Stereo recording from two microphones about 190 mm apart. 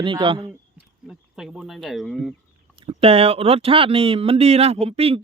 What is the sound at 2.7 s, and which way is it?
Speech, 30° right (ahead or behind).